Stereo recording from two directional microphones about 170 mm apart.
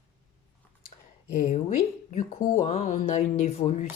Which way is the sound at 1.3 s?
50° left (ahead or behind).